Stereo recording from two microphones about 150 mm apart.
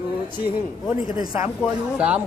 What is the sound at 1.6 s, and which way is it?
Speech, 10° right (ahead or behind).